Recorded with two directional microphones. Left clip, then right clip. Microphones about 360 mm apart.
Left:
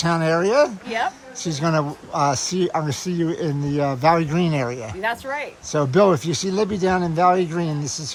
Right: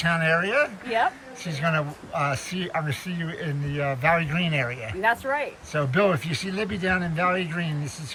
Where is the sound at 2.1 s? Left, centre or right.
Centre.